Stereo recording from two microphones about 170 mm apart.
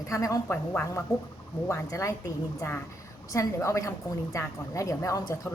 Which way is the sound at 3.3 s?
20° left (ahead or behind).